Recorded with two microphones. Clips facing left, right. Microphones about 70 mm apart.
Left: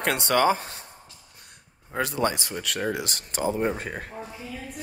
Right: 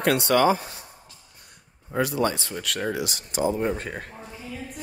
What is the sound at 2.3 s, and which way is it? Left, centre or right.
Speech, centre.